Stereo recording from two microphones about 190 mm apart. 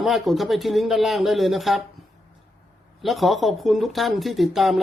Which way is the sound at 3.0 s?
Centre (ahead or behind).